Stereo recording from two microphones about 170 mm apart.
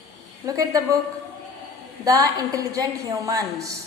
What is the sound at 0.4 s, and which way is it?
Speech, 20° right (ahead or behind).